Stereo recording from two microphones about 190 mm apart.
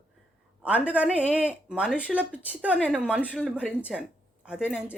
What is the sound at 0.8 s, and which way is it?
Speech, 5° right (ahead or behind).